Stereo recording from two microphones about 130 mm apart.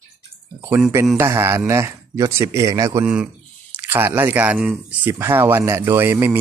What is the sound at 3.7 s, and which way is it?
Speech, 15° right (ahead or behind).